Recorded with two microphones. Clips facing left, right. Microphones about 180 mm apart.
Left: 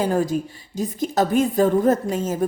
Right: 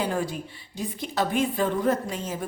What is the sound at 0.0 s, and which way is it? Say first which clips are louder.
A woman's voice: left 7 dB; 45° left (ahead or behind).